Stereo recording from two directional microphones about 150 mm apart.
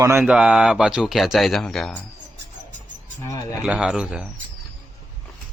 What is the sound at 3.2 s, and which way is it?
Speech, 20° left (ahead or behind).